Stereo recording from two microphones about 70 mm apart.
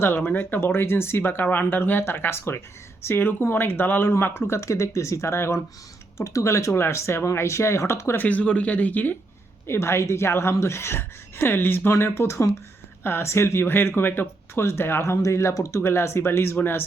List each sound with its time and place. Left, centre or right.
0.0 s speech: left
8.2 s speech: left
9.6 s speech: left